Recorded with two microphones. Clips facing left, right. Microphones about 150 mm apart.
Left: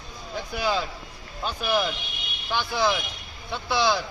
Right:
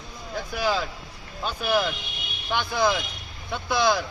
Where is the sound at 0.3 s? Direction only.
5° right (ahead or behind).